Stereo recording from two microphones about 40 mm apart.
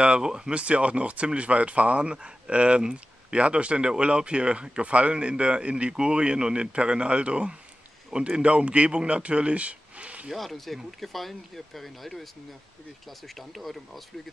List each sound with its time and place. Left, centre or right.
0.2 s speech: centre
0.6 s speech: right
2.1 s speech: right
10.3 s speech: centre
13.3 s speech: centre